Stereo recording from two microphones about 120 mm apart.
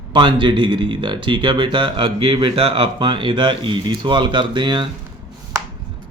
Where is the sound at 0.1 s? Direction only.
40° right (ahead or behind).